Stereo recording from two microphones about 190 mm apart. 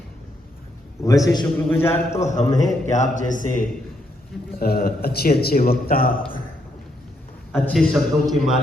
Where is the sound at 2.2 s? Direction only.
40° left (ahead or behind).